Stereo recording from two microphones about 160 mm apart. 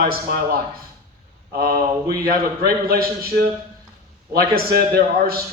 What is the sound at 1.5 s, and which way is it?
A man's voice, 70° right (ahead or behind).